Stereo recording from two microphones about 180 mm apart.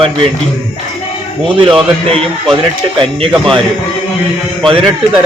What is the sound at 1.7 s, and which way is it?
A man's voice, 30° right (ahead or behind).